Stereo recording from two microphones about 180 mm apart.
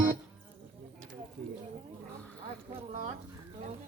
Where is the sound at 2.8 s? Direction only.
35° right (ahead or behind).